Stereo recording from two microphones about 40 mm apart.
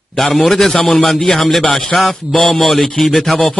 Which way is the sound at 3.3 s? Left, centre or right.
Left.